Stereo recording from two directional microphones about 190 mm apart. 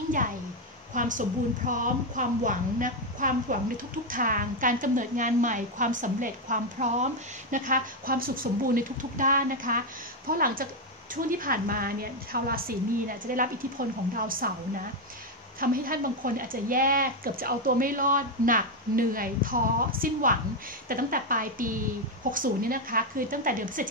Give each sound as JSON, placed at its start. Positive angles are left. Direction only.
{"t": 0.9, "sound": "a woman's voice", "side_deg": -45}
{"t": 15.6, "sound": "a woman's voice", "side_deg": -50}